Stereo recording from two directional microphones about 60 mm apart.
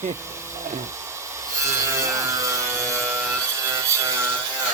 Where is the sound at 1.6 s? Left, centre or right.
Right.